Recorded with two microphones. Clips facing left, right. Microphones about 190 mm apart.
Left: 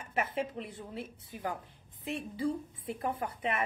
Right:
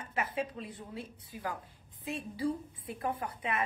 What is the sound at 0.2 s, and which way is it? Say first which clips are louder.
A woman's voice: left 2 dB; 25° left (ahead or behind).